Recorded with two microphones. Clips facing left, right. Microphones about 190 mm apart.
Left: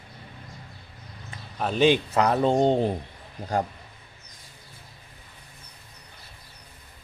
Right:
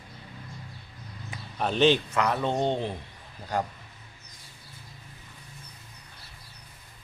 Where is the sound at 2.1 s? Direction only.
35° left (ahead or behind).